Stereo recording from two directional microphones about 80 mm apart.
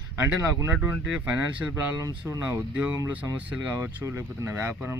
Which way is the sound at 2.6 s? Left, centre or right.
Centre.